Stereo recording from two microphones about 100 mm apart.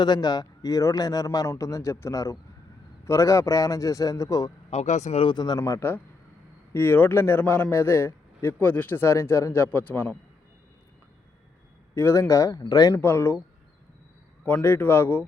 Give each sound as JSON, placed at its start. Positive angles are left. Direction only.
{"t": 0.0, "sound": "speech", "side_deg": 45}
{"t": 4.7, "sound": "speech", "side_deg": 90}
{"t": 5.3, "sound": "speech", "side_deg": 45}
{"t": 5.5, "sound": "a man's voice", "side_deg": 30}
{"t": 11.9, "sound": "speech", "side_deg": 25}
{"t": 12.9, "sound": "a man's voice", "side_deg": 25}
{"t": 14.4, "sound": "a man's voice", "side_deg": 20}